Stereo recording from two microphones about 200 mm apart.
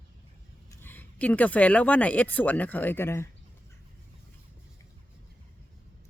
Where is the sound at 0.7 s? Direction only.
10° left (ahead or behind).